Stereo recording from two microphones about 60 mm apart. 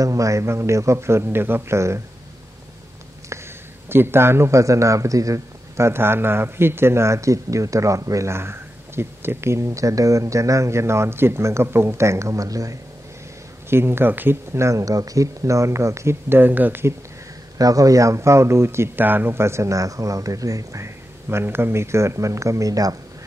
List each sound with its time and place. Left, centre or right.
0.0 s speech: right
3.3 s a sound: right
3.9 s a man's voice: right
8.3 s speech: right
13.7 s speech: right
17.6 s a man's voice: right
18.9 s a man's voice: right
20.8 s a man's voice: right